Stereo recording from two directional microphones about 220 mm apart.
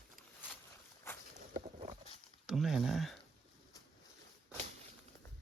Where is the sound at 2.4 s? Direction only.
Centre (ahead or behind).